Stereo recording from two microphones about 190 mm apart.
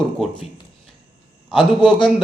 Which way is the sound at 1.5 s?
Centre (ahead or behind).